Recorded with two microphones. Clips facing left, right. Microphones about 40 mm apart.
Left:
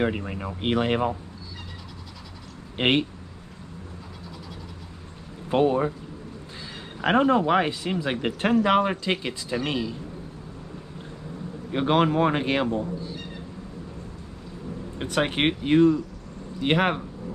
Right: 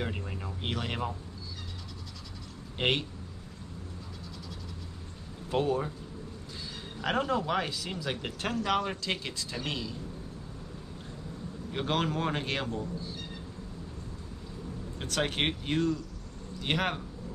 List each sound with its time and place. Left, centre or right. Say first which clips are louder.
0.0 s speech: left 10 dB; left
2.8 s speech: left 7 dB; left
5.5 s speech: left 8 dB; left
7.0 s speech: left 9 dB; left
11.7 s speech: left 9 dB; left
15.0 s speech: left 6 dB; left